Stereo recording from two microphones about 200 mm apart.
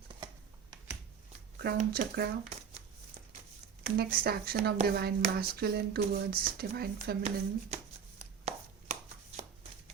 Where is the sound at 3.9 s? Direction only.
45° right (ahead or behind).